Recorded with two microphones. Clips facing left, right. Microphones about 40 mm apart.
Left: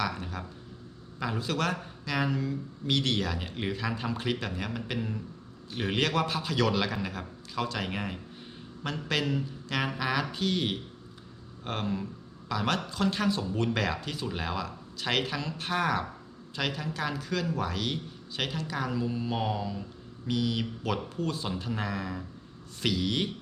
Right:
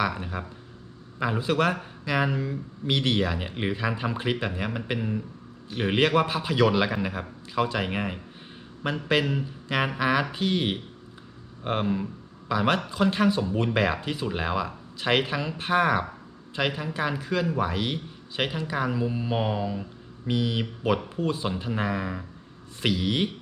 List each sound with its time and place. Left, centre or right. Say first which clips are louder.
0.0 s a man's voice: right 5 dB; centre